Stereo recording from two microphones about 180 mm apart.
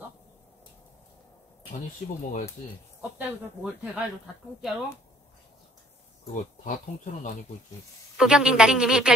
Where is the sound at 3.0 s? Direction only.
5° right (ahead or behind).